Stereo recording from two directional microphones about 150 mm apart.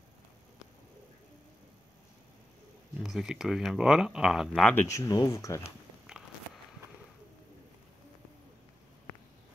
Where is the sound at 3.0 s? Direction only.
5° right (ahead or behind).